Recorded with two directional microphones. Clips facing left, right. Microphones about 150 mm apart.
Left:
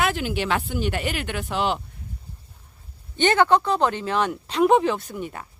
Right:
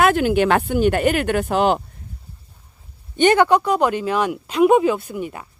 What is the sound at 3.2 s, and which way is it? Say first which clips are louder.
Speech: right 4 dB; 15° right (ahead or behind).